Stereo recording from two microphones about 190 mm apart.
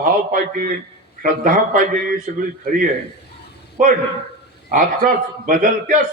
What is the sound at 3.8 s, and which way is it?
Speech, 45° right (ahead or behind).